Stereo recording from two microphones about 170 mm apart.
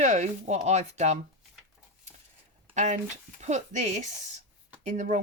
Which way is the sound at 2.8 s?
45° right (ahead or behind).